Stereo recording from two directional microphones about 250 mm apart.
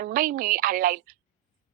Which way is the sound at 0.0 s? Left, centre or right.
Right.